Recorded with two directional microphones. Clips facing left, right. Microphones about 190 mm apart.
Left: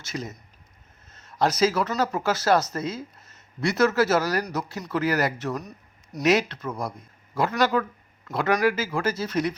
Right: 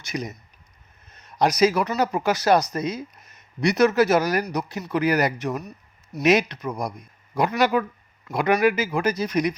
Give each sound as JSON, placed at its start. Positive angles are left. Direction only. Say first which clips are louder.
{"t": 0.0, "sound": "speech", "louder": "right 3 dB", "side_deg": -15}